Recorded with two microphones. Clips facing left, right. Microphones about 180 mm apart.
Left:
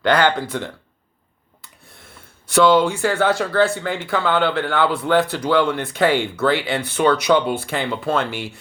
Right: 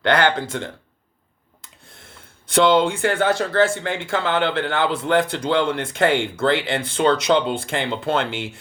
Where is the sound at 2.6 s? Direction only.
20° right (ahead or behind).